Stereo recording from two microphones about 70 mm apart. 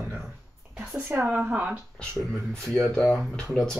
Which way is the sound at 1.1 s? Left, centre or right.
Right.